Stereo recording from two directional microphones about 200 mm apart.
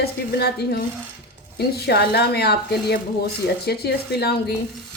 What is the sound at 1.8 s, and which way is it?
Speech, 55° left (ahead or behind).